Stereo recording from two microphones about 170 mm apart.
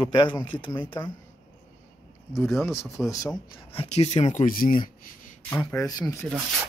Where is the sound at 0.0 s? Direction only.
25° left (ahead or behind).